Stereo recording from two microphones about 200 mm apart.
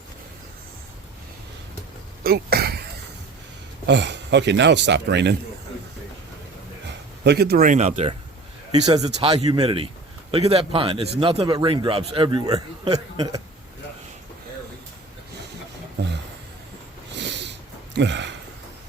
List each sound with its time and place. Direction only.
2.2 s a sound: 50° right (ahead or behind)
3.8 s speech: 60° right (ahead or behind)
7.3 s speech: 50° right (ahead or behind); by 8.1 s 35° right (ahead or behind)
8.7 s a man's voice: 20° right (ahead or behind)
17.2 s sniff: 60° right (ahead or behind)